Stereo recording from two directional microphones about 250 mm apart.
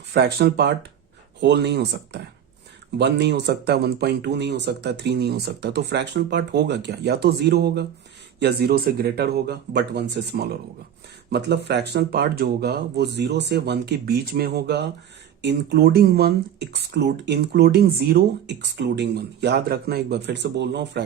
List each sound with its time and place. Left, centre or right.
0.1 s speech: right